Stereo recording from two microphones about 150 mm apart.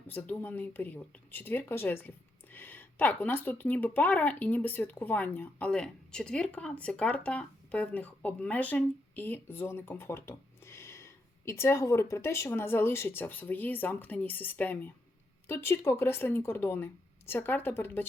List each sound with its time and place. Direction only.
0.1 s speech: 15° left (ahead or behind)